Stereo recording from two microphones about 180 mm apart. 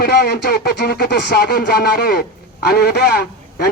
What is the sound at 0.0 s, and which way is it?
Speech, 65° left (ahead or behind).